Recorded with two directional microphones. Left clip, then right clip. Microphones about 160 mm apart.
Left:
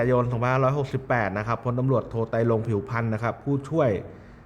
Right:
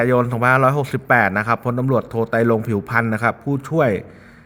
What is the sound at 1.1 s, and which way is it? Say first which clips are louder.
Speech: right 10 dB; 20° right (ahead or behind).